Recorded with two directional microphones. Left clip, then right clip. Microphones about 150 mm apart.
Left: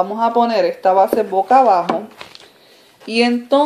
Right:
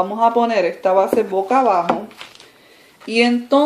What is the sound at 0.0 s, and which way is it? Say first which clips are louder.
Speech: even; 35° left (ahead or behind).